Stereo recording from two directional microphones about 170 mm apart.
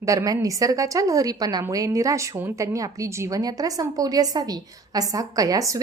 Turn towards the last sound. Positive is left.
turn(degrees=-20)  # may be behind; listen again after turning